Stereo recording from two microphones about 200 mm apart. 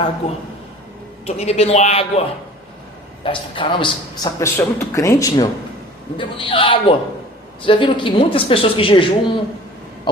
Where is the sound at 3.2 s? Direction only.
25° left (ahead or behind).